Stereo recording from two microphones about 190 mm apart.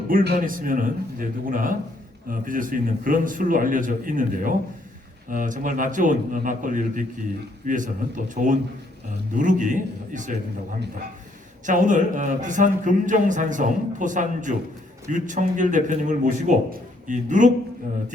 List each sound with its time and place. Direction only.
0.1 s a man's voice: 45° right (ahead or behind)
11.6 s a man's voice: 40° right (ahead or behind)